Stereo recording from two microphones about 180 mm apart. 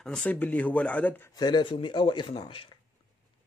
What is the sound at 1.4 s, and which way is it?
Speech, 25° left (ahead or behind).